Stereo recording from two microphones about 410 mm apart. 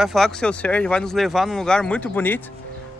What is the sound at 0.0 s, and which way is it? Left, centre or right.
Speech, centre.